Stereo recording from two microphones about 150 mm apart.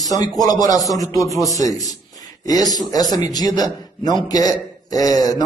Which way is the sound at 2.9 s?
25° left (ahead or behind).